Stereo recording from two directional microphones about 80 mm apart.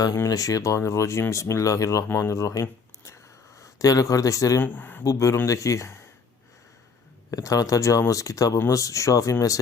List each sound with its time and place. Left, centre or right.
0.3 s speech: left
2.0 s speech: left
4.6 s speech: left
5.0 s speech: left
7.3 s speech: left